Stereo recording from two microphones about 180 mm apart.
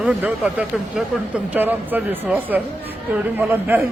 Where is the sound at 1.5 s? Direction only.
10° right (ahead or behind).